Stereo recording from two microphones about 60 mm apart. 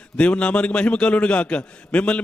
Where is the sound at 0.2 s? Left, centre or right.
Centre.